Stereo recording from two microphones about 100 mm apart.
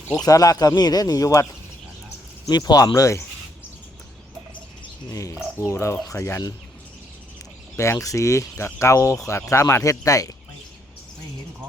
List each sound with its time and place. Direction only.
0.2 s speech: 40° left (ahead or behind)
2.5 s speech: 40° left (ahead or behind)
5.5 s speech: 30° left (ahead or behind)
7.8 s speech: 30° left (ahead or behind)